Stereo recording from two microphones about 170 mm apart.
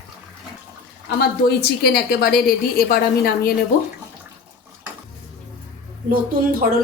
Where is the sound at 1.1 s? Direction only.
65° left (ahead or behind).